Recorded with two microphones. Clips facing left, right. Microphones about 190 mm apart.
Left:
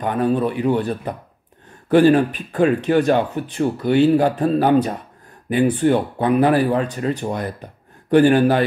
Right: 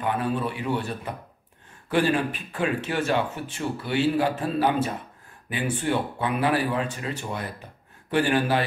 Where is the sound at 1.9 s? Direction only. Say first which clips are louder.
Left 10 dB; 40° left (ahead or behind).